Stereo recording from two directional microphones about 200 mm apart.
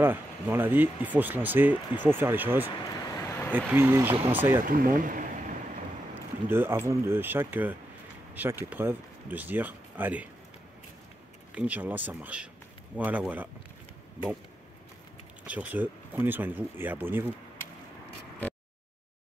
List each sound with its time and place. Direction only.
0.0 s speech: 10° right (ahead or behind)
3.3 s vehicle: 10° left (ahead or behind)
3.5 s speech: 10° right (ahead or behind)
4.6 s speech: 45° right (ahead or behind)
6.1 s a sound: 10° right (ahead or behind)
6.9 s speech: 10° right (ahead or behind)
11.5 s speech: 5° right (ahead or behind)
15.4 s speech: 5° right (ahead or behind)